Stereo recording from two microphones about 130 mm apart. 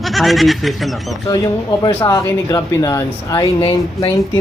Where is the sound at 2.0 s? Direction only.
25° left (ahead or behind).